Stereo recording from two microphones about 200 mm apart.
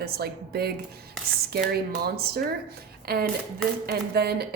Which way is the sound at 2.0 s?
50° right (ahead or behind).